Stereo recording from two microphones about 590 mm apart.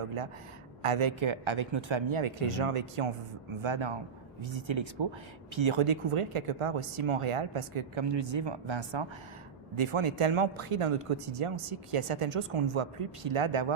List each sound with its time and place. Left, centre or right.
0.8 s speech: right